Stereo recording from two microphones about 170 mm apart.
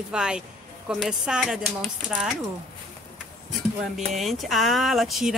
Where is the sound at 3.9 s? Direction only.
Centre (ahead or behind).